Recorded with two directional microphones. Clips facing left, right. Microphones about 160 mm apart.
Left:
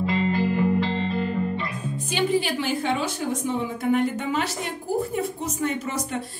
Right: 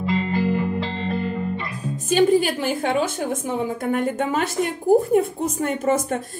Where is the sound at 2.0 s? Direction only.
45° right (ahead or behind).